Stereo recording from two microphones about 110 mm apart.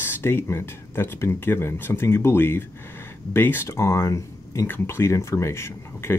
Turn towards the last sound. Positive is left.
turn(degrees=25)  # may be behind; listen again after turning